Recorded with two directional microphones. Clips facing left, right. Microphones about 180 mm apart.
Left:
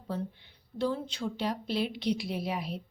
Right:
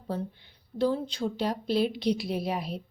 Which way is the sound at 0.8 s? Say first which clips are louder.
Right 4 dB; 35° right (ahead or behind).